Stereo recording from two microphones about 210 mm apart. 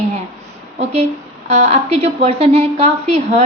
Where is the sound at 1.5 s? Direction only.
30° right (ahead or behind).